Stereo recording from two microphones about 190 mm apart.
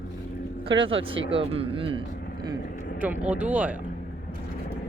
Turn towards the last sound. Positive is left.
turn(degrees=-10)  # may be behind; listen again after turning